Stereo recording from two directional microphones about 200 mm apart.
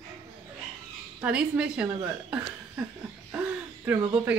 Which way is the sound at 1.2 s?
5° right (ahead or behind).